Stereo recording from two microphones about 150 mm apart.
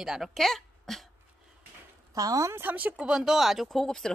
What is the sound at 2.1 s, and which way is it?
Speech, 25° right (ahead or behind).